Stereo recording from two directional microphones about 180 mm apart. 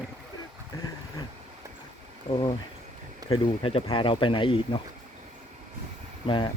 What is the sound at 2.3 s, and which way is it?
Speech, 25° left (ahead or behind).